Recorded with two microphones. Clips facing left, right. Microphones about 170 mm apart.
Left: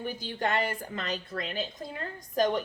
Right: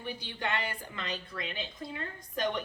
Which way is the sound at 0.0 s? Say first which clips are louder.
Left 5 dB; 45° left (ahead or behind).